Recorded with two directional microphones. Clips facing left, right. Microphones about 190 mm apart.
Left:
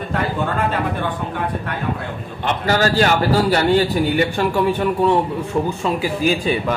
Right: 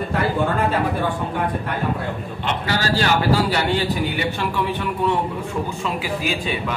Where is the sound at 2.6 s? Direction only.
45° left (ahead or behind).